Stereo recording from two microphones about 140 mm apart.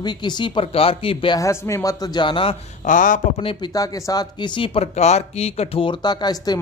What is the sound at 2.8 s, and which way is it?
Speech, 70° left (ahead or behind).